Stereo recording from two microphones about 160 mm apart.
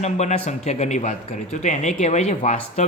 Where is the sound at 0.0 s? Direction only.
45° left (ahead or behind).